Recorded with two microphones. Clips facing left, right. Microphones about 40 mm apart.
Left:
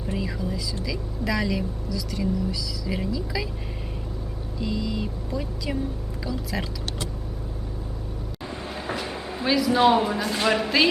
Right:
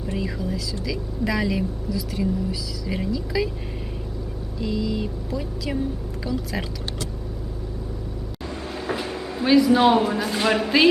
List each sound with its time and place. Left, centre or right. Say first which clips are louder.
0.1 s a sound: right 1 dB; centre
0.9 s speech: right 3 dB; centre
4.6 s speech: right 3 dB; centre
8.6 s vehicle: right 3 dB; centre
9.1 s a sound: right 3 dB; centre
9.5 s speech: right 3 dB; centre